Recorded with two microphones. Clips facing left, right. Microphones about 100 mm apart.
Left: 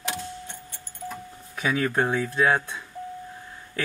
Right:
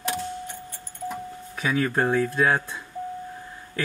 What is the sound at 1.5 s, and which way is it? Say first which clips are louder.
Speech: even; centre (ahead or behind).